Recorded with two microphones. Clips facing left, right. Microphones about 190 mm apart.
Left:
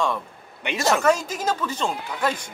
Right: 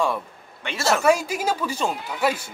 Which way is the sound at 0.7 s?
15° left (ahead or behind).